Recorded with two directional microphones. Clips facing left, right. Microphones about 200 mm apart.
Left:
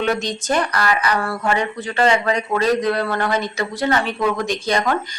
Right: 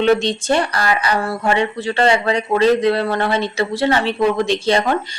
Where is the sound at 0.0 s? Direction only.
30° right (ahead or behind).